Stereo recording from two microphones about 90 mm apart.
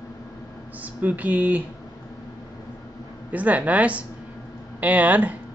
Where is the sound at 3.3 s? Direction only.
15° right (ahead or behind).